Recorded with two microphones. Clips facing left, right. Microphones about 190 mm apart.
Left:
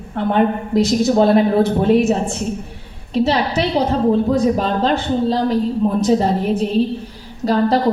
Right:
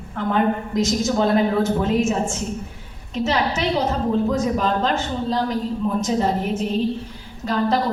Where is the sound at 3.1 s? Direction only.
35° left (ahead or behind).